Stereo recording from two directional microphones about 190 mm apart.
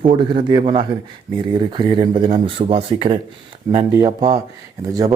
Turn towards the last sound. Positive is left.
turn(degrees=-20)  # may be behind; listen again after turning